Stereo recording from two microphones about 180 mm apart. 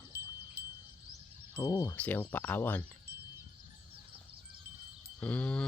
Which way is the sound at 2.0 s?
10° left (ahead or behind).